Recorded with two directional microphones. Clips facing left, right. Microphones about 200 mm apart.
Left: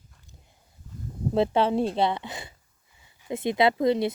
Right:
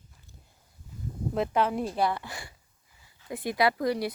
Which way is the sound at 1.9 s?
20° left (ahead or behind).